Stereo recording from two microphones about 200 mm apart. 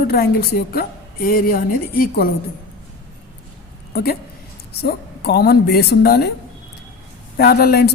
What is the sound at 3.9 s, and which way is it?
A woman's voice, 50° left (ahead or behind).